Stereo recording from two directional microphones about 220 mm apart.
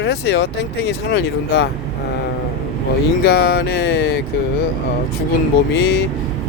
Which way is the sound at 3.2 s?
45° left (ahead or behind).